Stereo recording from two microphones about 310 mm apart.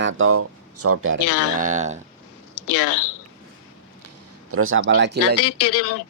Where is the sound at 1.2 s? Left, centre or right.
Left.